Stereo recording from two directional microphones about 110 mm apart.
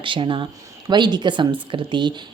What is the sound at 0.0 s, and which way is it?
Speech, 50° right (ahead or behind).